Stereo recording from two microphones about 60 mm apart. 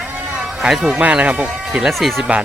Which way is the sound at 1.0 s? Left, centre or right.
Right.